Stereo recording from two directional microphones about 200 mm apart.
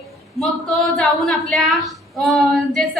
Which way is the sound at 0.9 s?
Centre (ahead or behind).